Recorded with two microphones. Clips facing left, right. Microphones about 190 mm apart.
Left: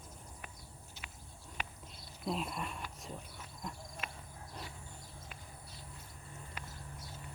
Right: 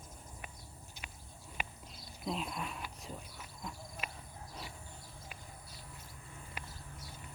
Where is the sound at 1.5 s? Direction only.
Centre (ahead or behind).